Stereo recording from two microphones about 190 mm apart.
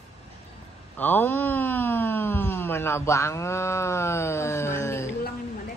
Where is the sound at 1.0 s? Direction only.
10° left (ahead or behind).